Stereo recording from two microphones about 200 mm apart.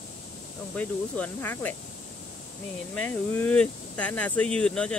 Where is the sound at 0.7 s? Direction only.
5° left (ahead or behind).